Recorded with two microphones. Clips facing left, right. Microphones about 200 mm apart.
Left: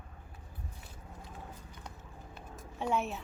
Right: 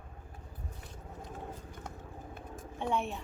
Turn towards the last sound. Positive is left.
turn(degrees=0)  # may be behind; listen again after turning